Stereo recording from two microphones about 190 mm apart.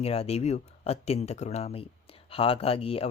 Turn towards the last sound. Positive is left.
turn(degrees=30)  # may be behind; listen again after turning